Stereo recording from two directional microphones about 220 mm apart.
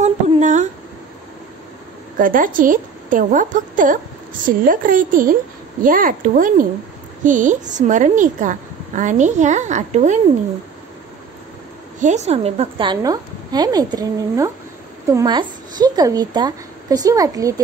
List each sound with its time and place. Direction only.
0.0 s a sound: 35° right (ahead or behind)
2.1 s a woman's voice: 40° right (ahead or behind)
12.0 s a woman's voice: 30° right (ahead or behind); by 17.6 s 15° right (ahead or behind)